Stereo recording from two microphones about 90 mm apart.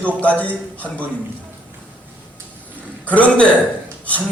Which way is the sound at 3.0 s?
15° left (ahead or behind).